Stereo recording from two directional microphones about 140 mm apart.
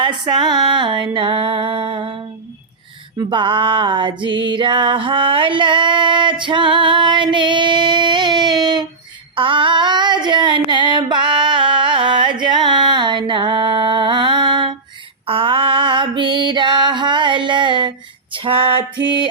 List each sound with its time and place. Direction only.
0.0 s music: 35° right (ahead or behind)
3.2 s music: 35° right (ahead or behind)
9.3 s female singing: 40° right (ahead or behind)